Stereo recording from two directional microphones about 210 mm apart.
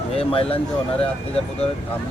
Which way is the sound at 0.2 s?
25° left (ahead or behind).